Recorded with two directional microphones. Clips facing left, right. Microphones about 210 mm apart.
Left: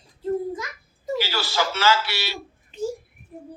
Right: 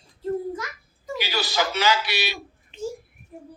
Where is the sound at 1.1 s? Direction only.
15° right (ahead or behind).